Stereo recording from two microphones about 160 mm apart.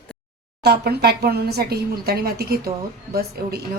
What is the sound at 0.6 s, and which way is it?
Speech, 85° right.